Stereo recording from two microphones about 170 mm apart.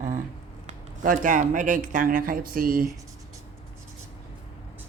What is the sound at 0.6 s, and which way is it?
Speech, 50° right (ahead or behind).